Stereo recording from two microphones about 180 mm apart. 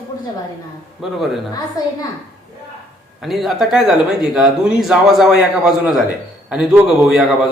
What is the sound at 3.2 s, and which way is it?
Speech, centre (ahead or behind).